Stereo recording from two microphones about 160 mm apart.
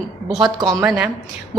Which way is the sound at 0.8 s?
10° right (ahead or behind).